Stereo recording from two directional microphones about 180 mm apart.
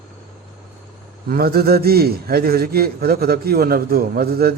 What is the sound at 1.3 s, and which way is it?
A man's voice, 55° right (ahead or behind).